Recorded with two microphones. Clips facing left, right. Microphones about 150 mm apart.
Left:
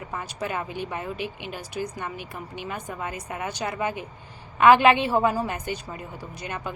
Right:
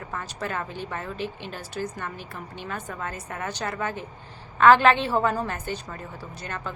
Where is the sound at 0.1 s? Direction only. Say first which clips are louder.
Left 1 dB; 15° left (ahead or behind).